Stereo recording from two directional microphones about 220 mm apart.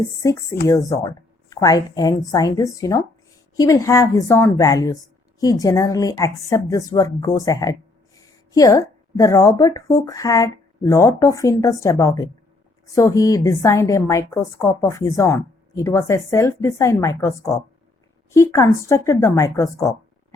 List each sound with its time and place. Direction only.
0.0 s a woman's voice: 15° left (ahead or behind)